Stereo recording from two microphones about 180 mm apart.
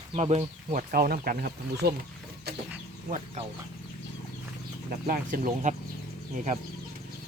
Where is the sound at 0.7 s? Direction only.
50° right (ahead or behind).